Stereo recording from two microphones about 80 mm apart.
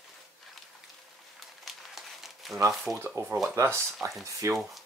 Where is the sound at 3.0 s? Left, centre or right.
Right.